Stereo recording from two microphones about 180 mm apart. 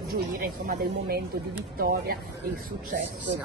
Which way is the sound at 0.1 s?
55° right (ahead or behind).